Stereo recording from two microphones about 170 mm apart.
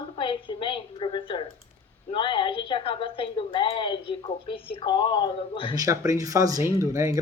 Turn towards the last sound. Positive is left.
turn(degrees=-20)  # may be behind; listen again after turning